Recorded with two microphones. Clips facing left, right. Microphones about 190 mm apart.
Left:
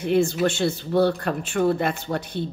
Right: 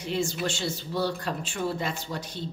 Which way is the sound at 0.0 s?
60° left (ahead or behind).